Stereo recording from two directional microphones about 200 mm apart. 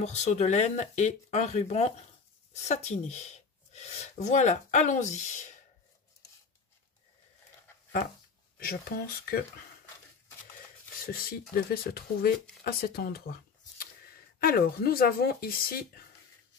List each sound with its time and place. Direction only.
0.0 s speech: 35° left (ahead or behind)
8.5 s speech: 50° left (ahead or behind)
11.1 s speech: 45° left (ahead or behind)